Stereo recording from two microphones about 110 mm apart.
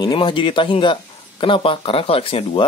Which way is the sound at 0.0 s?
45° left (ahead or behind).